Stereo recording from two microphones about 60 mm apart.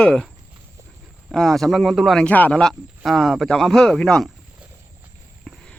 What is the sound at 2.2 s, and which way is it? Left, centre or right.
Speech, left.